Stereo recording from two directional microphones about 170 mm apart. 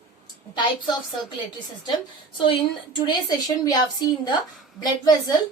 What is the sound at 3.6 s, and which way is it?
A woman's voice, 25° left (ahead or behind).